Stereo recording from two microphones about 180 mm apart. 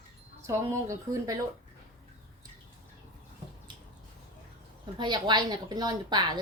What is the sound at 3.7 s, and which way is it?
Squish, 25° right (ahead or behind).